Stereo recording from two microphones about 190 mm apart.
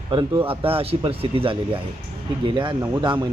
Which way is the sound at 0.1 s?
25° right (ahead or behind).